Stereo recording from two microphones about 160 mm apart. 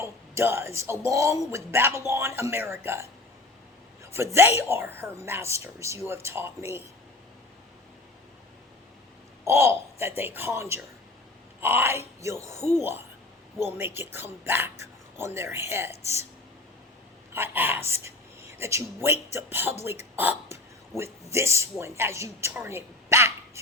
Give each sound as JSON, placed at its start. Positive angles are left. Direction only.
{"t": 0.0, "sound": "speech", "side_deg": -15}
{"t": 9.4, "sound": "speech", "side_deg": -15}
{"t": 17.3, "sound": "speech", "side_deg": -10}
{"t": 20.1, "sound": "a sound", "side_deg": -15}
{"t": 21.3, "sound": "speech", "side_deg": -15}